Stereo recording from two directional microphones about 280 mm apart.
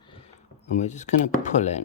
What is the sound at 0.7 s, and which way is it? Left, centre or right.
Speech, left.